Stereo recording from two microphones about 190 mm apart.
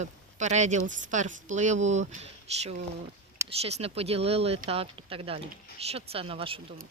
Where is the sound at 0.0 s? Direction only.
40° right (ahead or behind).